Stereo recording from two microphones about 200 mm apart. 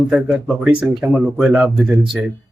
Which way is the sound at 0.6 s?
5° right (ahead or behind).